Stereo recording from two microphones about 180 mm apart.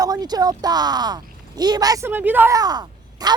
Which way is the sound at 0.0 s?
20° right (ahead or behind).